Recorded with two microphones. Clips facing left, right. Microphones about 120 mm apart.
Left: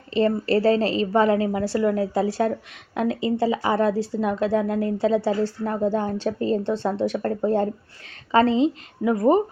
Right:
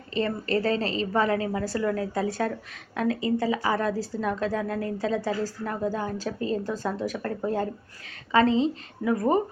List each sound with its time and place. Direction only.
0.2 s a woman's voice: 35° left (ahead or behind)
4.1 s speech: 5° left (ahead or behind)
4.4 s a woman's voice: 30° left (ahead or behind)
9.0 s a woman's voice: 20° left (ahead or behind)